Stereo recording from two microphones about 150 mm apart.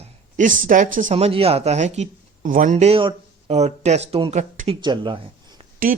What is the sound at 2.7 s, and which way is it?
Speech, 45° right (ahead or behind).